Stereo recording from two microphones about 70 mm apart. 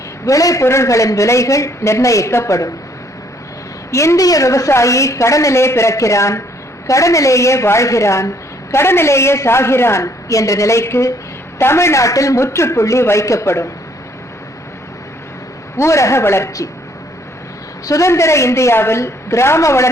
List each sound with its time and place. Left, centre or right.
0.3 s a man's voice: left
3.9 s a man's voice: left
15.8 s a woman's voice: left
17.8 s a man's voice: left